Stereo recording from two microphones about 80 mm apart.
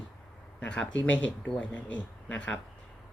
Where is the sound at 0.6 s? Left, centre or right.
Centre.